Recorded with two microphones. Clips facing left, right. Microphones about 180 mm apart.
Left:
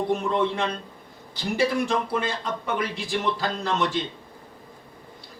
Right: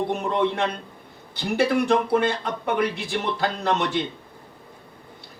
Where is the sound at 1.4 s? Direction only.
60° right (ahead or behind).